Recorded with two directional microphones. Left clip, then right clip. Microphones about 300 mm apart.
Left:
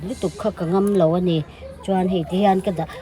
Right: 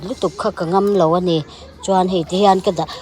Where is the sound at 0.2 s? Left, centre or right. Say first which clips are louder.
Right 5 dB; centre.